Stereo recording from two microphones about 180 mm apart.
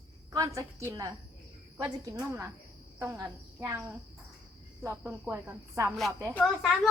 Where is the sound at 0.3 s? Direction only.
15° right (ahead or behind).